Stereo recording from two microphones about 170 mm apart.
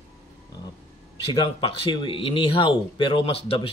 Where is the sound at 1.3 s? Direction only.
30° left (ahead or behind).